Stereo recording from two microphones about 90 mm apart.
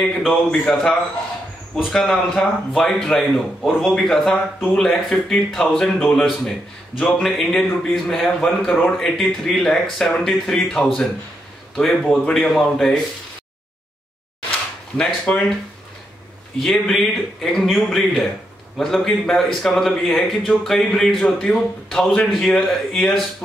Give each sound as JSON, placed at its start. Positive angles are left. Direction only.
{"t": 0.5, "sound": "a man's voice", "side_deg": 5}
{"t": 5.9, "sound": "a man's voice", "side_deg": 15}
{"t": 7.0, "sound": "a man's voice", "side_deg": 5}
{"t": 15.0, "sound": "a man's voice", "side_deg": 10}
{"t": 16.5, "sound": "a man's voice", "side_deg": 5}